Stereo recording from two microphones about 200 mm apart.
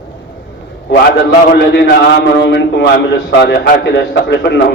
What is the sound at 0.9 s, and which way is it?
A man's voice, 60° left (ahead or behind).